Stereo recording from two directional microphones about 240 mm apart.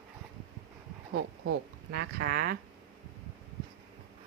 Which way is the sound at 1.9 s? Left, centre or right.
Right.